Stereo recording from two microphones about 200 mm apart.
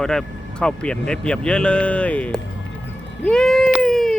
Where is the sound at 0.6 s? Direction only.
5° left (ahead or behind).